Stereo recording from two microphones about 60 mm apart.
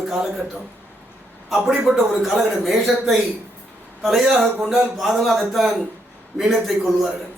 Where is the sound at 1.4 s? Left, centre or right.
Centre.